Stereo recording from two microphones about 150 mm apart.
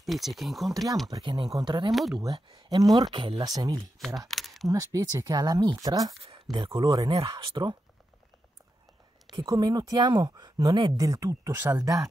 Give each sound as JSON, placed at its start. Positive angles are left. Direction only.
{"t": 0.0, "sound": "speech", "side_deg": 0}
{"t": 1.1, "sound": "speech", "side_deg": -25}
{"t": 1.9, "sound": "speech", "side_deg": 0}
{"t": 2.1, "sound": "speech", "side_deg": -30}
{"t": 3.4, "sound": "speech", "side_deg": -25}
{"t": 4.3, "sound": "a sound", "side_deg": 0}
{"t": 4.6, "sound": "speech", "side_deg": -20}
{"t": 7.1, "sound": "speech", "side_deg": -35}
{"t": 9.4, "sound": "speech", "side_deg": -25}